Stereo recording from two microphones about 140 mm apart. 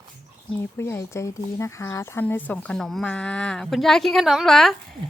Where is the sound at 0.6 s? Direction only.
15° left (ahead or behind); by 4.7 s centre (ahead or behind).